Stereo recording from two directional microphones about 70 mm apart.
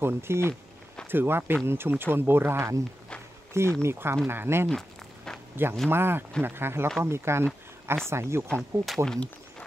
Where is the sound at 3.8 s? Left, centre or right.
Right.